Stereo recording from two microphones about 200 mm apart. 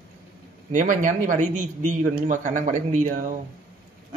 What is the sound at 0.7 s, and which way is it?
A man's voice, 40° right (ahead or behind).